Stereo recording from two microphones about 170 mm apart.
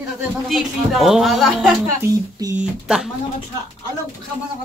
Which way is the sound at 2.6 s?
5° right (ahead or behind).